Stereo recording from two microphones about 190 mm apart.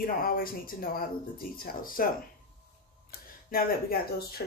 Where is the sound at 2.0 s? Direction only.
50° left (ahead or behind).